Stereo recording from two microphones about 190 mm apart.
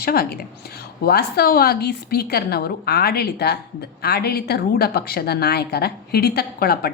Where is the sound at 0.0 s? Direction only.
55° left (ahead or behind).